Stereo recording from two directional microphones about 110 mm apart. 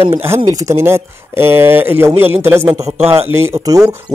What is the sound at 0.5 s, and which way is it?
Speech, 25° right (ahead or behind).